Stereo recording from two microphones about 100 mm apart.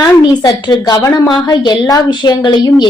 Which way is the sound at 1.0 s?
30° left (ahead or behind).